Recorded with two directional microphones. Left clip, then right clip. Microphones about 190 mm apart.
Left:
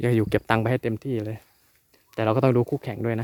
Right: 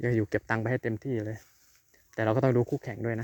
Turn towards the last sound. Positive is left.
turn(degrees=30)  # may be behind; listen again after turning